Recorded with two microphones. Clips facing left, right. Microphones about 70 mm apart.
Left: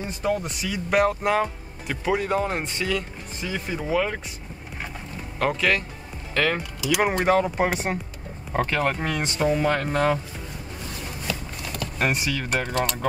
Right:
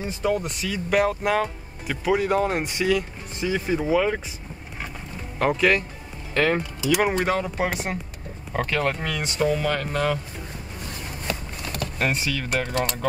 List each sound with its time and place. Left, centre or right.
0.4 s speech: centre
5.4 s speech: centre
6.9 s speech: centre
7.2 s speech: left
11.3 s a sound: right
12.0 s speech: centre